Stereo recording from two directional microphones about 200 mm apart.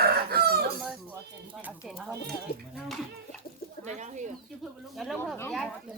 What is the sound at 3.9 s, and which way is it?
Speech, 35° right (ahead or behind).